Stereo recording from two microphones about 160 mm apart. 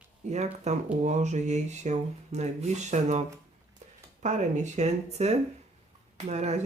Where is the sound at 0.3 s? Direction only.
45° right (ahead or behind).